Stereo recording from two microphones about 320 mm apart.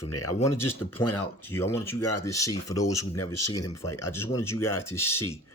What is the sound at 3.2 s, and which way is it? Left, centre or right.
Speech, left.